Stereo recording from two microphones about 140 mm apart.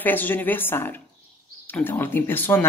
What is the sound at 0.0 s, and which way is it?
Speech, 15° left (ahead or behind).